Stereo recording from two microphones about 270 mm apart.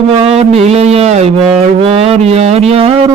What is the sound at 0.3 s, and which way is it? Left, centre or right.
Music, right.